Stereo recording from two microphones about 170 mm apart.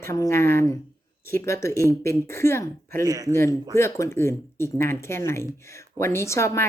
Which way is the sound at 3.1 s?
20° right (ahead or behind).